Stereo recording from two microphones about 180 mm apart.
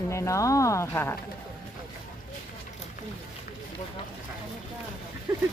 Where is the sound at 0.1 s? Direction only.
15° left (ahead or behind).